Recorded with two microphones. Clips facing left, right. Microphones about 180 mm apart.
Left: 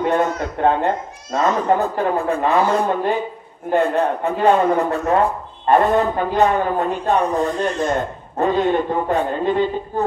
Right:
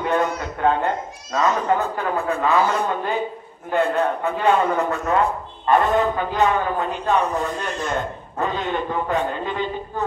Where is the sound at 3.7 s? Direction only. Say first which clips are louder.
Left 3 dB; 35° left (ahead or behind).